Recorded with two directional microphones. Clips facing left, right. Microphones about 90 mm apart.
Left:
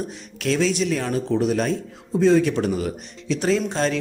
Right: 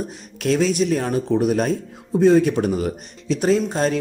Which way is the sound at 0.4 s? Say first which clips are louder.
Right 3 dB; 45° right (ahead or behind).